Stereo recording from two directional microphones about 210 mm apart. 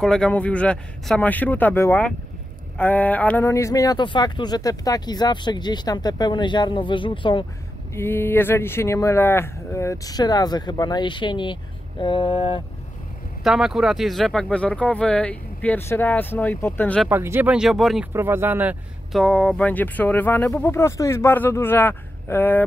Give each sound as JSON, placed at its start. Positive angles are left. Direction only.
{"t": 0.0, "sound": "speech", "side_deg": 5}
{"t": 7.9, "sound": "speech", "side_deg": 10}
{"t": 13.4, "sound": "speech", "side_deg": 0}
{"t": 17.1, "sound": "speech", "side_deg": -10}
{"t": 18.1, "sound": "speech", "side_deg": -10}